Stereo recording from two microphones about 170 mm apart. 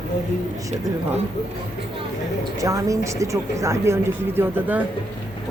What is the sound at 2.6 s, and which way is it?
Speech, 20° right (ahead or behind).